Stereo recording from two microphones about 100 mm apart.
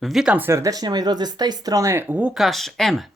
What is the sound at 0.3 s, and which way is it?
Speech, 20° right (ahead or behind).